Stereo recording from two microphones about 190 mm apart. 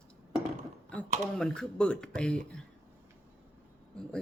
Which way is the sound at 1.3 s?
5° left (ahead or behind).